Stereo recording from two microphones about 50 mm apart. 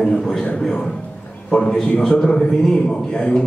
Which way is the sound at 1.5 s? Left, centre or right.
Centre.